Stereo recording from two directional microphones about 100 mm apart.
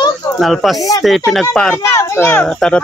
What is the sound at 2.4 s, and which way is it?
Speech, 10° left (ahead or behind).